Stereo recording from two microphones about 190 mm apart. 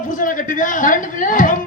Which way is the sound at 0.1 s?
45° left (ahead or behind).